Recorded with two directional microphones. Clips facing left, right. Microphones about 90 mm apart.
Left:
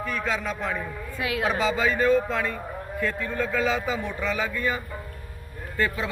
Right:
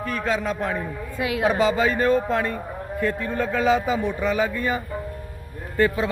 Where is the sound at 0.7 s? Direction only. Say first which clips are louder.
Right 3 dB; 25° right (ahead or behind).